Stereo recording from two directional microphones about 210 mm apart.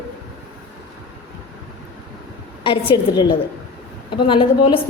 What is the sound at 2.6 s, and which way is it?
A woman's voice, 25° left (ahead or behind).